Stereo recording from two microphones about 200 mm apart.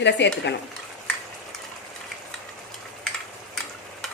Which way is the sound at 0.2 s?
60° left (ahead or behind).